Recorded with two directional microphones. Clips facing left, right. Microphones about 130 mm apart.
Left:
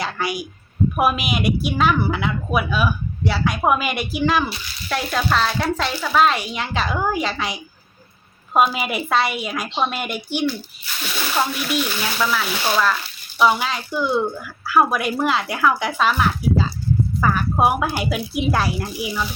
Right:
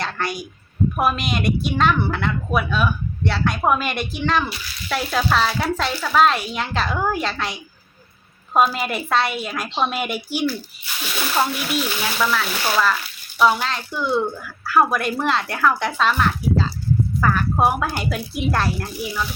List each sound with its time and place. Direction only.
0.0 s a woman's voice: 5° left (ahead or behind)